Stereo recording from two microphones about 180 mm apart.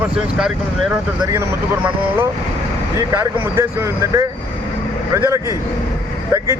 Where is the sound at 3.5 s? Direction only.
15° right (ahead or behind).